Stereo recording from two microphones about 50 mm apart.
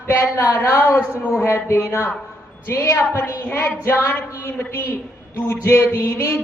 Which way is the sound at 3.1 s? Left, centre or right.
Left.